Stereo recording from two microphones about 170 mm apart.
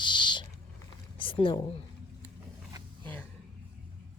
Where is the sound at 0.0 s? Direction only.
25° left (ahead or behind).